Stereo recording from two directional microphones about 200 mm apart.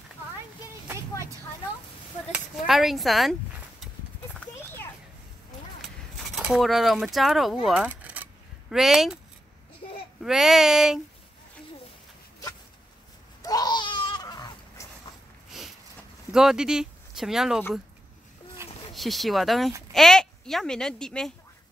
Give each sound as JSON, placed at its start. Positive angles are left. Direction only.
{"t": 2.3, "sound": "speech", "side_deg": 0}
{"t": 6.3, "sound": "speech", "side_deg": 0}
{"t": 10.2, "sound": "speech", "side_deg": 0}
{"t": 13.4, "sound": "a sound", "side_deg": 20}
{"t": 15.5, "sound": "a sound", "side_deg": 0}
{"t": 16.3, "sound": "speech", "side_deg": -5}
{"t": 18.9, "sound": "a woman's voice", "side_deg": 0}